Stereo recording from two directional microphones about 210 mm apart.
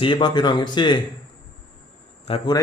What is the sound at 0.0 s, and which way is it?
Speech, 20° left (ahead or behind).